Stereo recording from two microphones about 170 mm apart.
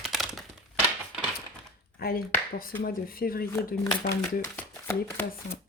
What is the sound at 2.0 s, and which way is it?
A woman's voice, 65° left (ahead or behind).